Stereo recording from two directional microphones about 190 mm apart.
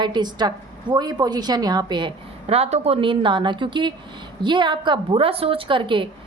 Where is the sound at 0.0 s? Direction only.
20° right (ahead or behind).